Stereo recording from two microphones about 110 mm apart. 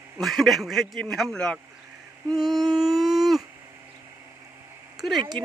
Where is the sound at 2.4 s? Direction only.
Centre (ahead or behind).